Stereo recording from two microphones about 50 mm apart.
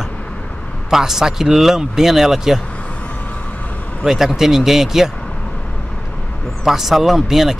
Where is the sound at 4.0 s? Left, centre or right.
Centre.